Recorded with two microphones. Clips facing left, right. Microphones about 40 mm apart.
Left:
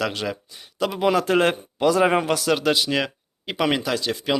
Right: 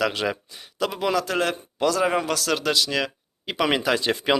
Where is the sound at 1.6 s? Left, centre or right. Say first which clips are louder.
Left 3 dB; centre.